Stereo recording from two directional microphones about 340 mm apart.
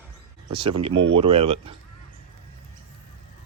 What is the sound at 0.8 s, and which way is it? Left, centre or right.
Speech, centre.